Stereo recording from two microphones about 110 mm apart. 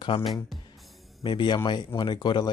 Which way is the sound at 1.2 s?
45° left (ahead or behind).